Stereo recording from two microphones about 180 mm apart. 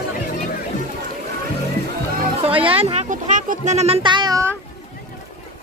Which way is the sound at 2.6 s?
30° right (ahead or behind).